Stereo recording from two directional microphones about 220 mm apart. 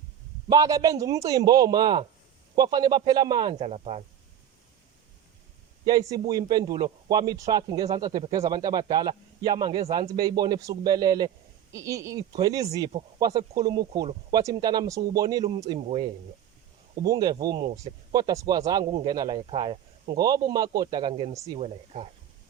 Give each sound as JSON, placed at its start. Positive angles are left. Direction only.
{"t": 0.5, "sound": "a man's voice", "side_deg": -15}
{"t": 5.8, "sound": "a man's voice", "side_deg": -15}
{"t": 21.6, "sound": "a man's voice", "side_deg": -30}